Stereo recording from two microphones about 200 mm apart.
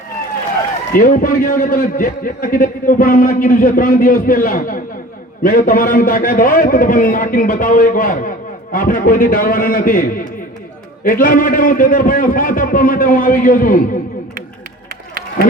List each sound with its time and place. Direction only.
0.9 s a man's voice: 45° left (ahead or behind)